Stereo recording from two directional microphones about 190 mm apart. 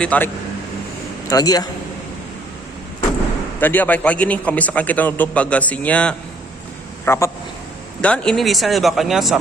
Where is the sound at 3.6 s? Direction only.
10° left (ahead or behind).